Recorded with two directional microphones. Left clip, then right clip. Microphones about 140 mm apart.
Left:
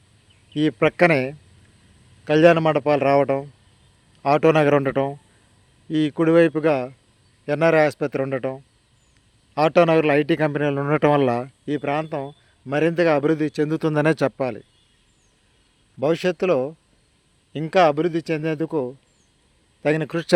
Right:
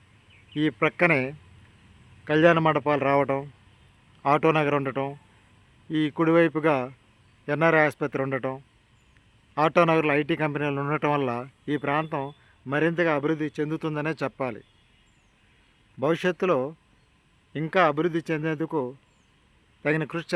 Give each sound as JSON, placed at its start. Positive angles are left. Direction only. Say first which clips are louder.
{"t": 0.5, "sound": "a man's voice", "louder": "left 5 dB", "side_deg": 25}
{"t": 4.5, "sound": "a man's voice", "louder": "left 7 dB", "side_deg": 35}
{"t": 5.9, "sound": "a man's voice", "louder": "left 4 dB", "side_deg": 20}
{"t": 9.6, "sound": "a man's voice", "louder": "left 4 dB", "side_deg": 20}
{"t": 11.6, "sound": "a man's voice", "louder": "right 2 dB", "side_deg": 15}
{"t": 12.7, "sound": "a man's voice", "louder": "left 5 dB", "side_deg": 25}
{"t": 14.3, "sound": "speech", "louder": "left 5 dB", "side_deg": 25}
{"t": 16.0, "sound": "a man's voice", "louder": "left 4 dB", "side_deg": 15}